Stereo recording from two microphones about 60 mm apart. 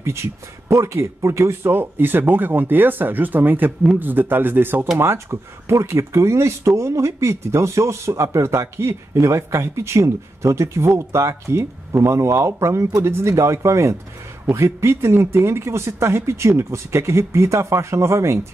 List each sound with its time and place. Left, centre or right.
0.0 s speech: right
4.9 s speech: right